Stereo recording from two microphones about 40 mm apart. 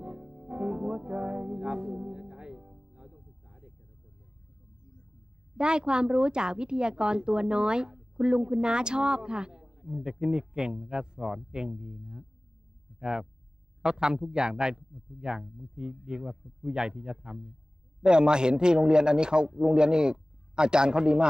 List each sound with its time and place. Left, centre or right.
0.0 s music: centre
1.6 s a woman's voice: right
2.0 s music: centre
2.7 s music: centre
5.6 s a woman's voice: right
9.7 s a sound: centre
10.0 s a woman's voice: centre
11.1 s a woman's voice: centre
15.4 s speech: centre
15.7 s a woman's voice: centre